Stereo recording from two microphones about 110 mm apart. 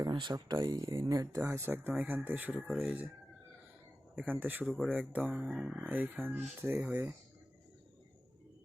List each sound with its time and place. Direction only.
0.0 s speech: 40° right (ahead or behind)
1.4 s speech: 25° right (ahead or behind)
1.9 s speech: 10° right (ahead or behind)
4.1 s speech: 15° right (ahead or behind)
4.6 s speech: centre (ahead or behind)